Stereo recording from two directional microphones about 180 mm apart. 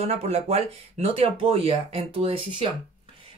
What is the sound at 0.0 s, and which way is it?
Speech, 35° right (ahead or behind).